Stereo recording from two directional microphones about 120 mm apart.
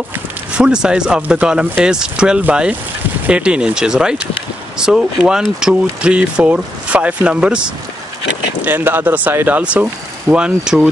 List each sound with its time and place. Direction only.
0.6 s speech: 5° right (ahead or behind)
8.6 s speech: 15° right (ahead or behind)